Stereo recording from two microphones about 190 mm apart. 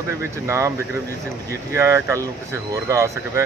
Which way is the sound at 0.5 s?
15° right (ahead or behind).